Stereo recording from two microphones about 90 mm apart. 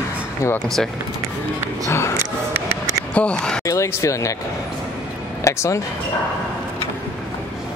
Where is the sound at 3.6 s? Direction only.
35° left (ahead or behind).